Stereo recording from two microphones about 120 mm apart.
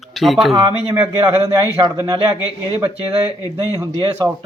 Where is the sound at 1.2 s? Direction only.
35° right (ahead or behind).